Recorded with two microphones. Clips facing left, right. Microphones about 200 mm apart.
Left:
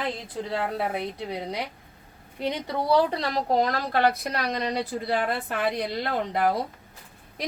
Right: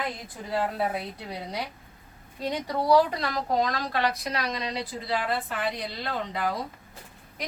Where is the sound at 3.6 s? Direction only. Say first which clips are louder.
Left 3 dB; 50° left (ahead or behind).